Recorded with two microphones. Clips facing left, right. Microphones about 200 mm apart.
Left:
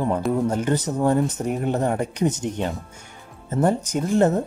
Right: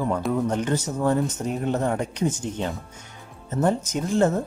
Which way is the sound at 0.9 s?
30° left (ahead or behind).